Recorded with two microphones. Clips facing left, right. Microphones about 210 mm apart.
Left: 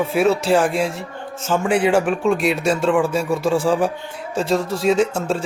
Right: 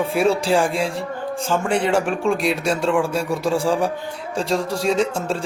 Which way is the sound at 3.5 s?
30° right (ahead or behind).